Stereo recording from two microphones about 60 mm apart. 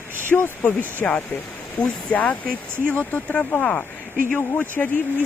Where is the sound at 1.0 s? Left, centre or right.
Centre.